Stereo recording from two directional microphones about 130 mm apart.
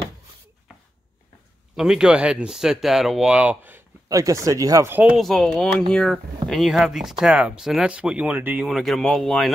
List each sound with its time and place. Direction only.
1.8 s speech: 5° right (ahead or behind)
4.1 s speech: 25° right (ahead or behind)
5.1 s speech: centre (ahead or behind)
8.6 s speech: centre (ahead or behind)